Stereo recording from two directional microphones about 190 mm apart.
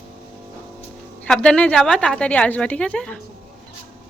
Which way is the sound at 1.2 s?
5° left (ahead or behind).